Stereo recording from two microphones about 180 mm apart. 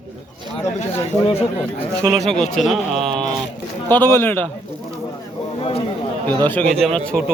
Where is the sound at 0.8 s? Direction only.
35° left (ahead or behind).